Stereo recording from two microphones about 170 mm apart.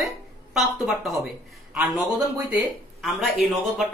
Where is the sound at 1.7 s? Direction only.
5° right (ahead or behind).